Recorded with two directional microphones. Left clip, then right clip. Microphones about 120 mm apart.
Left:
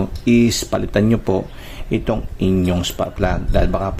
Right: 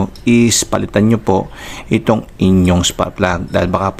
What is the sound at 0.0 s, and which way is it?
Speech, 25° right (ahead or behind).